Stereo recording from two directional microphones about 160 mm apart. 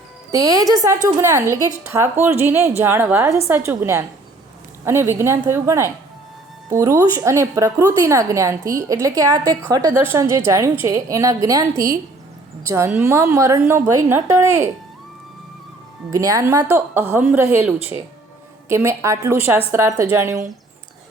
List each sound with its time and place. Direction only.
0.3 s a woman's voice: 20° right (ahead or behind)
12.6 s a woman's voice: 15° right (ahead or behind)
16.0 s a woman's voice: 20° right (ahead or behind)